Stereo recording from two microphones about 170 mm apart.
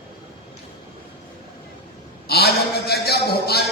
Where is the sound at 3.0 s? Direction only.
70° left (ahead or behind).